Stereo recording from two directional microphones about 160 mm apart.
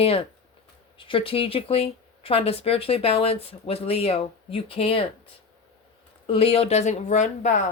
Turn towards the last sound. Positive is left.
turn(degrees=50)  # may be behind; listen again after turning